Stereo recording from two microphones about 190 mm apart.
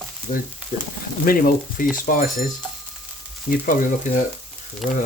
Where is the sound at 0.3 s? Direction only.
45° left (ahead or behind).